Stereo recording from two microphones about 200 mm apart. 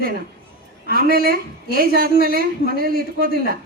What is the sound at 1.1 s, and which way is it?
A woman's voice, 45° right (ahead or behind).